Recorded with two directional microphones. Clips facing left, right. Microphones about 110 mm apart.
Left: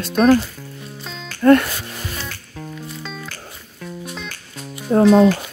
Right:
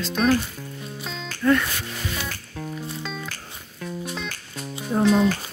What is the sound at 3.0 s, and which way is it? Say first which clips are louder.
Music: left 1 dB; centre (ahead or behind).